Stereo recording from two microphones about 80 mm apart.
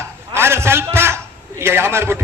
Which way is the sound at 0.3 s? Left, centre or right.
Right.